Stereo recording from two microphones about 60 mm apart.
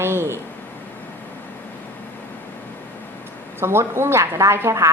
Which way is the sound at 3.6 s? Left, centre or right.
Right.